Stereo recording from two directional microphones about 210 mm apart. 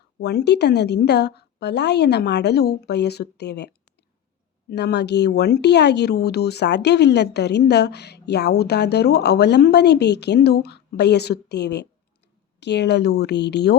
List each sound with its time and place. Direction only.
0.2 s speech: 50° left (ahead or behind)